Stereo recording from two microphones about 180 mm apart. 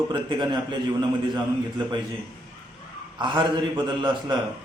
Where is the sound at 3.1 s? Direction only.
25° right (ahead or behind).